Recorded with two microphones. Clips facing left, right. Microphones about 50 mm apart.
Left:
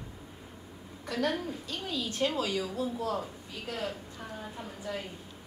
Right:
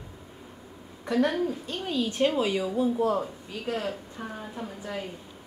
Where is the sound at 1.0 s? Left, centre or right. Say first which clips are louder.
Right 6 dB; right.